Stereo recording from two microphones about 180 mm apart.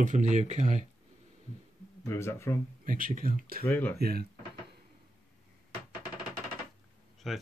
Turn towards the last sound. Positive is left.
turn(degrees=0)  # may be behind; listen again after turning